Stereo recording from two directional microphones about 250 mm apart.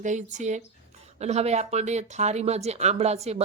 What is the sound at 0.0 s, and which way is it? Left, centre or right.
A woman's voice, right.